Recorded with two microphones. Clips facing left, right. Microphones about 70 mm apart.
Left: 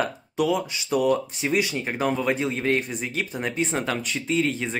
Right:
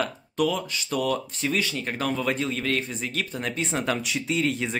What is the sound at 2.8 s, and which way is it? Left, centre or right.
Speech, centre.